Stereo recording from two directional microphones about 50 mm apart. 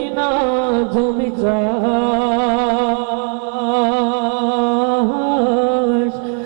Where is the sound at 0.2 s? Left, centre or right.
Centre.